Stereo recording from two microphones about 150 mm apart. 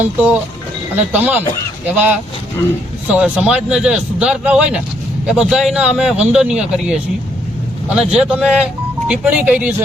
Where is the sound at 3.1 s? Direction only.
5° right (ahead or behind).